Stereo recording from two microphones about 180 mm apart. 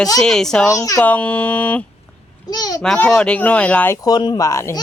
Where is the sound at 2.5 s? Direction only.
20° left (ahead or behind).